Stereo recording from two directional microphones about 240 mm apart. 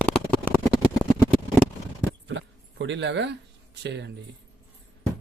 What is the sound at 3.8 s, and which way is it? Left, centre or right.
Speech, right.